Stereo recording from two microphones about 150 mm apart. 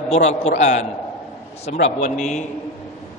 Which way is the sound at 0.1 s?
45° left (ahead or behind).